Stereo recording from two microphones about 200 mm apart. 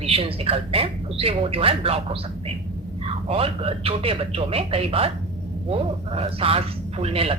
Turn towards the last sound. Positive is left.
turn(degrees=-30)  # may be behind; listen again after turning